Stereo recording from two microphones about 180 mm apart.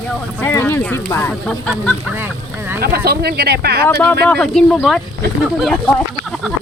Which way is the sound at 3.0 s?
60° right (ahead or behind).